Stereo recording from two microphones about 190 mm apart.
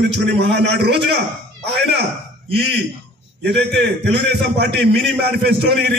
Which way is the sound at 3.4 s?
60° right (ahead or behind).